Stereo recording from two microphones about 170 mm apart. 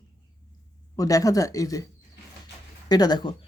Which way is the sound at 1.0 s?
20° left (ahead or behind).